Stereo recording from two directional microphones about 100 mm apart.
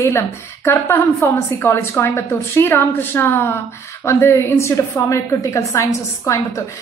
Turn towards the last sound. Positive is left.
turn(degrees=30)  # may be behind; listen again after turning